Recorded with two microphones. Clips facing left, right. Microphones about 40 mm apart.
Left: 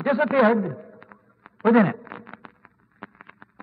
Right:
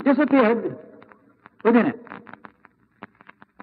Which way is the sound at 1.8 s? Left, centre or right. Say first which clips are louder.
Left 1 dB; centre.